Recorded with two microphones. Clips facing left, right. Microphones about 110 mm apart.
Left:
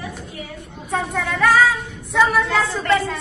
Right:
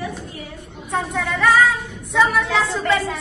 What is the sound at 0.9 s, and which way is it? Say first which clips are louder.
A woman's voice: even; centre (ahead or behind).